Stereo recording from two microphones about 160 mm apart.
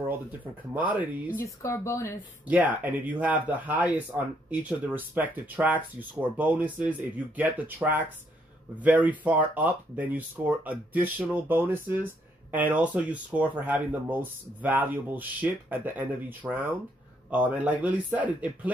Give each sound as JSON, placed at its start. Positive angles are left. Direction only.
{"t": 0.7, "sound": "speech", "side_deg": -10}
{"t": 1.4, "sound": "speech", "side_deg": 15}
{"t": 2.4, "sound": "speech", "side_deg": -10}